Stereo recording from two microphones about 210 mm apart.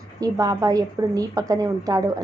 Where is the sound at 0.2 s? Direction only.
15° right (ahead or behind).